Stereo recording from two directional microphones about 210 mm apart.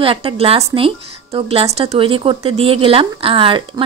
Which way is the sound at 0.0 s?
25° right (ahead or behind).